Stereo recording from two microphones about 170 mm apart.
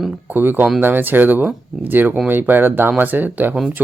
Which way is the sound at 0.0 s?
10° right (ahead or behind).